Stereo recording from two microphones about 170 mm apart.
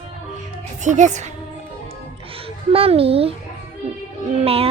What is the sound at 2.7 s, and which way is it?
Speech, 35° right (ahead or behind).